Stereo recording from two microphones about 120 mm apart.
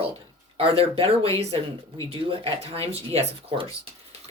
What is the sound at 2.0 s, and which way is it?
Speech, 50° right (ahead or behind).